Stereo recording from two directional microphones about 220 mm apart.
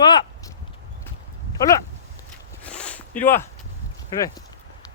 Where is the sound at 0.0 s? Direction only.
20° left (ahead or behind).